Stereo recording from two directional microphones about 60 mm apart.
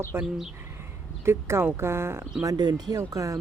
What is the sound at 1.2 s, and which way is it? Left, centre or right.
Speech, right.